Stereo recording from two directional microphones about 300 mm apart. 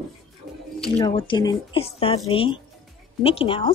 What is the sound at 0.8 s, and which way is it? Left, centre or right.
Speech, centre.